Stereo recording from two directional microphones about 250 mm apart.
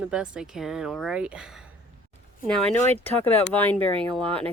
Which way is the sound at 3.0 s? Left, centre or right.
Centre.